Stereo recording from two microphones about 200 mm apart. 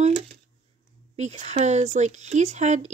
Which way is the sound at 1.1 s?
35° right (ahead or behind).